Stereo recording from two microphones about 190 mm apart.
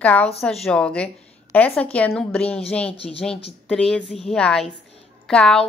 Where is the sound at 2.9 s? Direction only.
30° left (ahead or behind).